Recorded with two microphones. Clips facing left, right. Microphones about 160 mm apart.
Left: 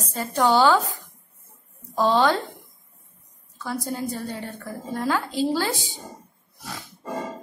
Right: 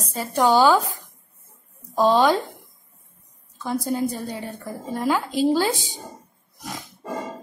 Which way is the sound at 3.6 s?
15° right (ahead or behind).